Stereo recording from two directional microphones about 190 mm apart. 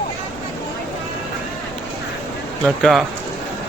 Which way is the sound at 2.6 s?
Centre (ahead or behind).